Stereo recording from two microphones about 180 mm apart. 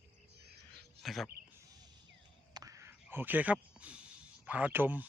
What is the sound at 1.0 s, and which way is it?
Speech, centre (ahead or behind).